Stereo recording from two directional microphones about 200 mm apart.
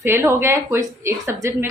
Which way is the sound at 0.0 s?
10° right (ahead or behind).